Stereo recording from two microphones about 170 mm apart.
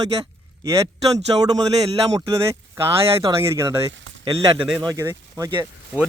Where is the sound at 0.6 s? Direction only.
20° right (ahead or behind).